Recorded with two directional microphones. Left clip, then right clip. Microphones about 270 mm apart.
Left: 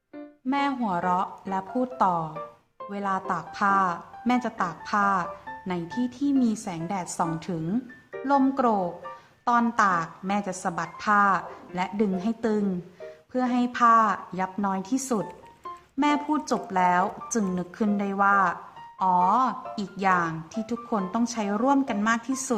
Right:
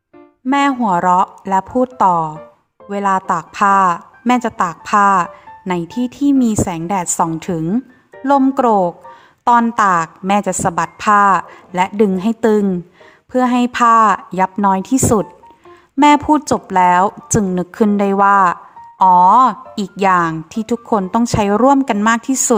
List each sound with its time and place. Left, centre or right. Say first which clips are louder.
0.4 s speech: right 12 dB; right